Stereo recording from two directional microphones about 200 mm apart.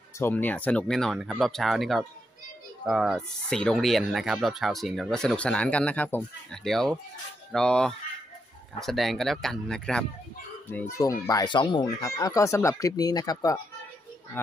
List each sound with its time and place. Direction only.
0.2 s speech: 10° left (ahead or behind)